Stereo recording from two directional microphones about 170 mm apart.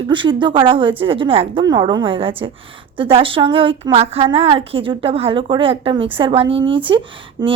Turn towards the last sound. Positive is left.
turn(degrees=-30)  # may be behind; listen again after turning